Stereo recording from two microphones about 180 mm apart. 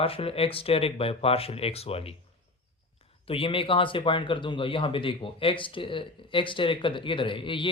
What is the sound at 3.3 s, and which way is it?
Speech, 30° left (ahead or behind).